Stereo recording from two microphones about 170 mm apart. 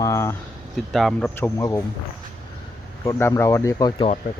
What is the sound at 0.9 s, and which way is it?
Speech, centre (ahead or behind).